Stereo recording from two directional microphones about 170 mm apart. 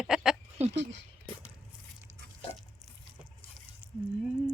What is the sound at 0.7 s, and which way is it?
Speech, 90° right.